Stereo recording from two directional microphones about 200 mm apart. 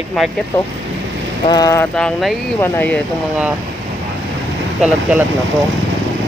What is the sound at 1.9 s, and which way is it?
Speech, 5° left (ahead or behind).